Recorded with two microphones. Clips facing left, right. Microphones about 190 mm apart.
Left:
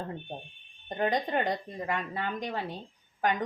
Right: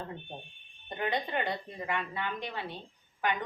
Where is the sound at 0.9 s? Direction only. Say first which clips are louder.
Left 4 dB; 40° left (ahead or behind).